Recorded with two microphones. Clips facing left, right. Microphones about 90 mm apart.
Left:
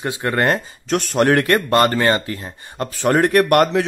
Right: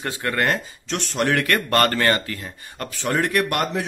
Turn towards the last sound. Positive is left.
turn(degrees=55)  # may be behind; listen again after turning